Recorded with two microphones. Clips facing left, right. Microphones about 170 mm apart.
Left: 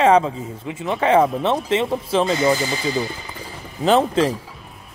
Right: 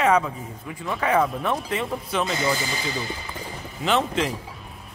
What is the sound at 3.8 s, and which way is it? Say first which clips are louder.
Speech: left 7 dB; 35° left (ahead or behind).